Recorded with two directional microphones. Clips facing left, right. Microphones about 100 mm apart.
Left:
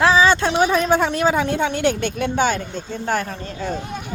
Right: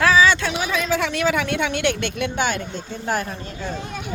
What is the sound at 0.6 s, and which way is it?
A woman's voice, 45° left (ahead or behind).